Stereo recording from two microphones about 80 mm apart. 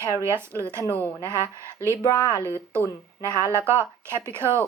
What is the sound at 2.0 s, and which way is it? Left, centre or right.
Speech, left.